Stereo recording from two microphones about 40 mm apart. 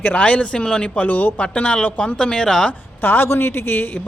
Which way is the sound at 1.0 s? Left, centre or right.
Left.